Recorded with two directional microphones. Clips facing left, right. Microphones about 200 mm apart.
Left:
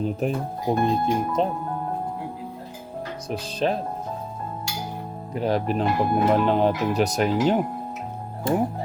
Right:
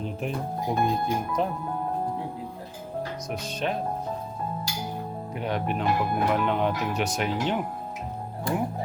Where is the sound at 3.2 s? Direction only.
30° left (ahead or behind).